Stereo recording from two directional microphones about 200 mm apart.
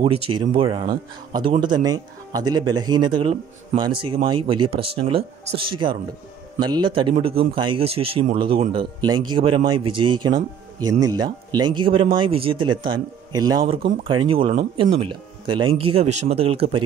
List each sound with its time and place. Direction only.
0.0 s speech: 25° right (ahead or behind)